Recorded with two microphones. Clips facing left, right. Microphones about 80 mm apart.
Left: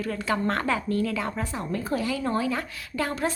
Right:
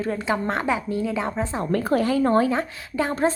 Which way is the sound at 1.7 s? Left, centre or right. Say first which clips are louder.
Right 7 dB; right.